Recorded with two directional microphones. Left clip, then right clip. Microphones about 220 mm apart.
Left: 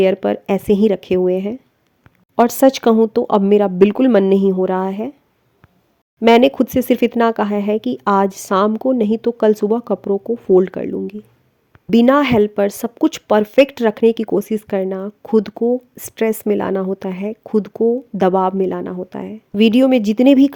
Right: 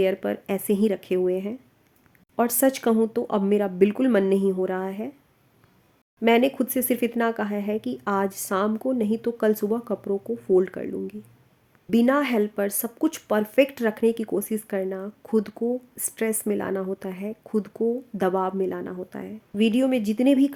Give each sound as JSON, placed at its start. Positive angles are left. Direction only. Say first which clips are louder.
{"t": 0.0, "sound": "speech", "louder": "left 9 dB", "side_deg": 35}
{"t": 6.1, "sound": "speech", "louder": "left 9 dB", "side_deg": 35}